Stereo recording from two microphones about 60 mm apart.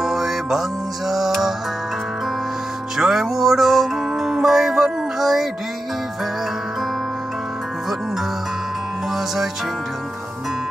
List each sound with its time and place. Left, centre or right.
0.0 s music: centre
3.0 s music: centre